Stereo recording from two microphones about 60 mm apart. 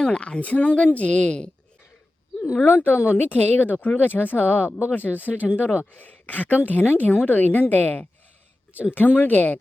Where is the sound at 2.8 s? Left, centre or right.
Left.